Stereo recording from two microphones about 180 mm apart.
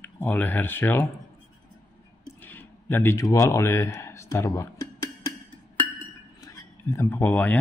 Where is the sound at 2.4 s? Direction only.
10° left (ahead or behind).